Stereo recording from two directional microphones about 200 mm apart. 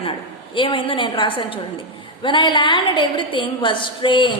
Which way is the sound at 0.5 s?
25° left (ahead or behind).